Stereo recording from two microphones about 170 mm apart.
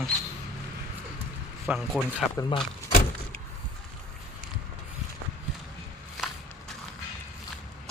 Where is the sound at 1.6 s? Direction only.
Centre (ahead or behind).